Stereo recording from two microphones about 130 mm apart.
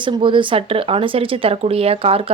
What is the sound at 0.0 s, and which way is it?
Speech, 40° right (ahead or behind).